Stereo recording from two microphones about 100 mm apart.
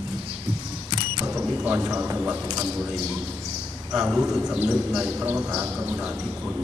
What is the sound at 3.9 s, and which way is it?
Speech, 5° right (ahead or behind).